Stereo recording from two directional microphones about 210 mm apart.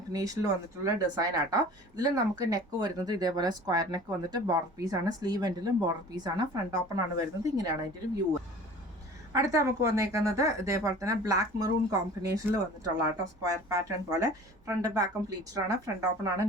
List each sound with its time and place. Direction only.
0.1 s speech: 15° right (ahead or behind)
9.3 s speech: 15° right (ahead or behind)